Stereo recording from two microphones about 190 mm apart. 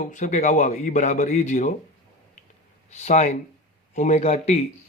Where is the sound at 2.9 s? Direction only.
35° left (ahead or behind).